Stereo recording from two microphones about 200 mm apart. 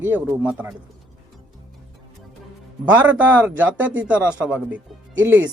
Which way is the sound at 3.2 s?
10° right (ahead or behind).